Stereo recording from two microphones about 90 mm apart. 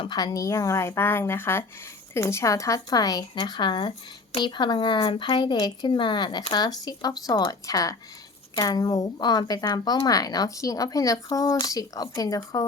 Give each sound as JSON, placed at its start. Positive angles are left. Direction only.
{"t": 0.1, "sound": "speech", "side_deg": 45}
{"t": 9.1, "sound": "speech", "side_deg": 55}